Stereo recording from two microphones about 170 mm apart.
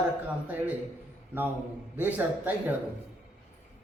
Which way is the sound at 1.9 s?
10° right (ahead or behind).